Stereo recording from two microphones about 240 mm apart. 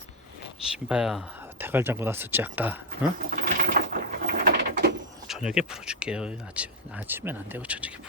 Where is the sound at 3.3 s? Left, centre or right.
Right.